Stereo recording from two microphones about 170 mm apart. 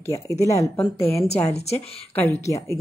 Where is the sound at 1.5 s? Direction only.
40° left (ahead or behind).